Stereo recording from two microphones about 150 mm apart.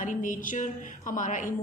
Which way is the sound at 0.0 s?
60° left (ahead or behind).